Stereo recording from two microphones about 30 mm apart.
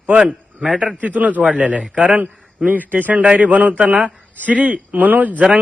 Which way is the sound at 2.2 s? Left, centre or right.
Right.